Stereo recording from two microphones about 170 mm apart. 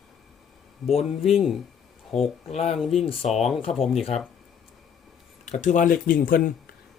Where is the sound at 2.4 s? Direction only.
40° left (ahead or behind).